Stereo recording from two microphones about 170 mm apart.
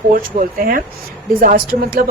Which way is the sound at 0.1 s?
55° right (ahead or behind).